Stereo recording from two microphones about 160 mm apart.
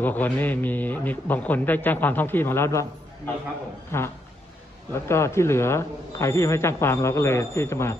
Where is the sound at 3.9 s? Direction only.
15° left (ahead or behind).